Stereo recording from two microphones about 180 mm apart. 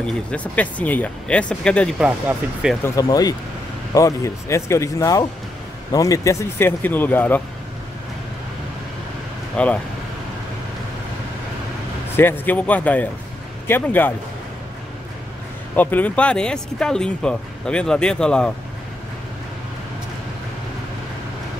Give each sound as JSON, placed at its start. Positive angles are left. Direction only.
{"t": 0.0, "sound": "speech", "side_deg": 5}
{"t": 2.0, "sound": "speech", "side_deg": -5}
{"t": 2.8, "sound": "speech", "side_deg": 20}
{"t": 9.6, "sound": "speech", "side_deg": 5}
{"t": 12.2, "sound": "speech", "side_deg": 10}
{"t": 15.7, "sound": "speech", "side_deg": 10}